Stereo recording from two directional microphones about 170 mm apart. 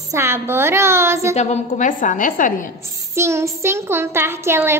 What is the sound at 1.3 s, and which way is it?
A woman's voice, 45° left (ahead or behind).